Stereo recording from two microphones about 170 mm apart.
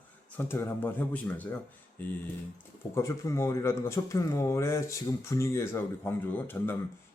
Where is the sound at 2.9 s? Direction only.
15° left (ahead or behind).